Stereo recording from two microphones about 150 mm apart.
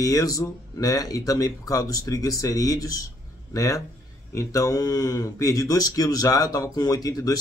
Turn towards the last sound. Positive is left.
turn(degrees=25)  # may be behind; listen again after turning